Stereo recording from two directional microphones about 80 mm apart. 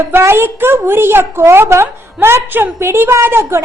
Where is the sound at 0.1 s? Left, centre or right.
Right.